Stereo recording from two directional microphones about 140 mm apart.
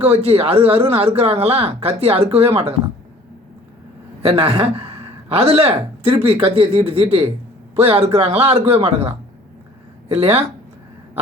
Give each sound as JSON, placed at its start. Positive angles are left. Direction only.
{"t": 0.0, "sound": "speech", "side_deg": -45}
{"t": 4.2, "sound": "a man's voice", "side_deg": -45}